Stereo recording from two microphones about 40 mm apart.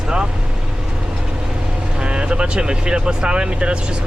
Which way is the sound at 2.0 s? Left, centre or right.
Right.